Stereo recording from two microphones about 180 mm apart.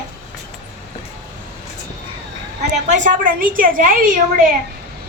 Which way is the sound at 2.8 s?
45° right (ahead or behind).